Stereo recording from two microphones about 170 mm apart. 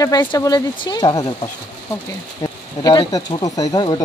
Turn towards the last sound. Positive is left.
turn(degrees=25)  # may be behind; listen again after turning